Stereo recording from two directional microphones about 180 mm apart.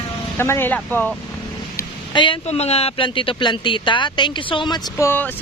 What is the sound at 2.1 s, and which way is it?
Speech, 30° left (ahead or behind).